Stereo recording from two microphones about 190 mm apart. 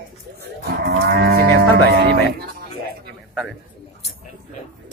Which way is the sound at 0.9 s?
55° right (ahead or behind).